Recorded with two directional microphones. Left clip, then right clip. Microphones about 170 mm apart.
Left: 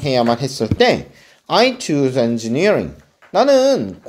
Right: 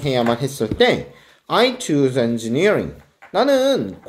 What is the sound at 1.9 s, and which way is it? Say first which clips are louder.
Speech: left 1 dB; 40° left (ahead or behind).